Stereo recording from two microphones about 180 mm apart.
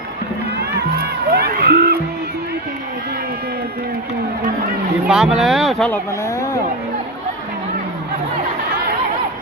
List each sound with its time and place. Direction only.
0.5 s crowd: 65° right (ahead or behind)
5.0 s speech: 5° right (ahead or behind)
5.9 s speech: 15° left (ahead or behind)